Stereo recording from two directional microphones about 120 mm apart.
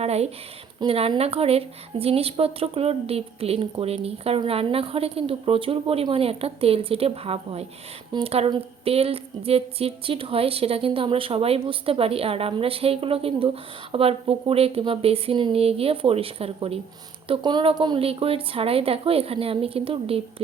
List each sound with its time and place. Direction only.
0.0 s a woman's voice: 60° right (ahead or behind)
17.2 s a woman's voice: 45° right (ahead or behind)
18.0 s a woman's voice: 50° right (ahead or behind)